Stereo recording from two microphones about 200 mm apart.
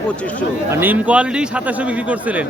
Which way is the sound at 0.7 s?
10° right (ahead or behind).